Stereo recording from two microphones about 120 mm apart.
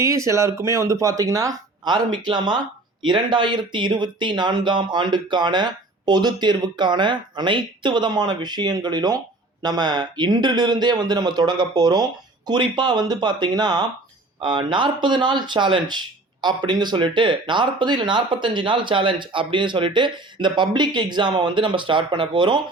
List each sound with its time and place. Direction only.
0.0 s speech: 25° right (ahead or behind); by 22.6 s 40° right (ahead or behind)